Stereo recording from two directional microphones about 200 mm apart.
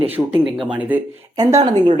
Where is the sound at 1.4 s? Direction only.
20° right (ahead or behind).